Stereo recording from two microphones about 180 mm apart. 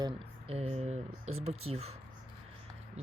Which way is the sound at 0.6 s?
35° right (ahead or behind).